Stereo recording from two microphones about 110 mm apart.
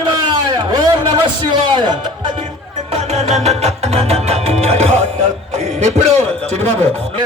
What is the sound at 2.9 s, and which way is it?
Music, 75° right (ahead or behind).